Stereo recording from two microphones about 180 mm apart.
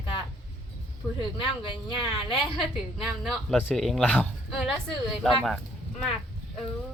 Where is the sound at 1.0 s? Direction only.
5° right (ahead or behind).